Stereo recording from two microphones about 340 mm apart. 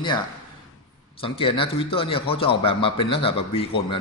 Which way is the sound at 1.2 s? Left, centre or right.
Centre.